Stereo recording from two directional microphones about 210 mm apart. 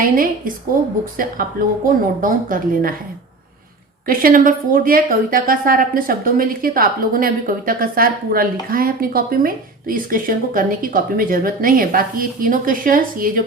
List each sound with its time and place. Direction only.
0.0 s a woman's voice: 40° right (ahead or behind)
4.0 s a woman's voice: 45° right (ahead or behind)